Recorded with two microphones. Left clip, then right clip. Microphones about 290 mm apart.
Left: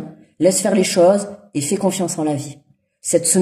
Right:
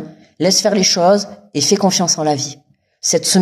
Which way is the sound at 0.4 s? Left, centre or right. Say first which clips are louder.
Right 2 dB; right.